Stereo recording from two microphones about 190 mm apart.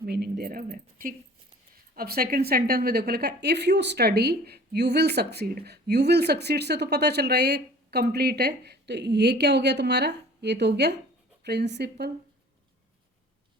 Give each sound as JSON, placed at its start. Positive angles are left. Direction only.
{"t": 0.0, "sound": "speech", "side_deg": -60}